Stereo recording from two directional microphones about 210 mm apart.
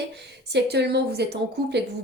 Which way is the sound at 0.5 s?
50° right (ahead or behind).